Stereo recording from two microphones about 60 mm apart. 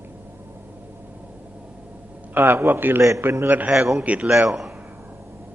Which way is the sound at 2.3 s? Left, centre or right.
Right.